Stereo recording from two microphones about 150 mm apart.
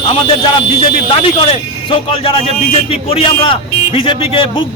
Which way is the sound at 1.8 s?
35° left (ahead or behind).